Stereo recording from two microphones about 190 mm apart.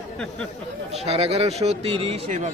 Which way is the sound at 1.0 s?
35° right (ahead or behind).